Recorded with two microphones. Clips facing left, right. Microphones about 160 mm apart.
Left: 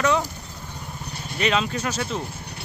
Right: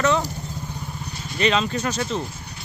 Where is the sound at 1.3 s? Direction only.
5° left (ahead or behind).